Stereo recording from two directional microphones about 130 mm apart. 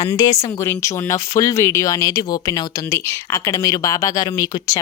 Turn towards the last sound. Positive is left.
turn(degrees=30)  # may be behind; listen again after turning